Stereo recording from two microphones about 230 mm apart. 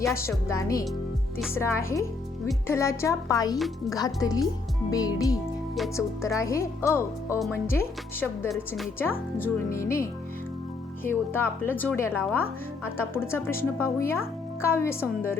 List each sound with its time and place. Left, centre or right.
0.1 s a woman's voice: centre